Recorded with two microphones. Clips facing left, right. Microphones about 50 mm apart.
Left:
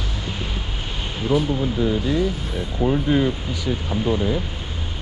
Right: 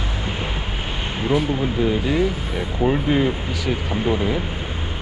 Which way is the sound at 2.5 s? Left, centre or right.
Right.